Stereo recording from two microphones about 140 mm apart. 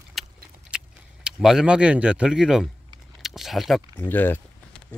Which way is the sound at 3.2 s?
Centre (ahead or behind).